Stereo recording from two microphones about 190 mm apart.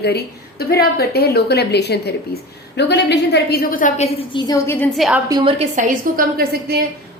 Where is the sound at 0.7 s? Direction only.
55° left (ahead or behind); by 4.1 s 40° left (ahead or behind).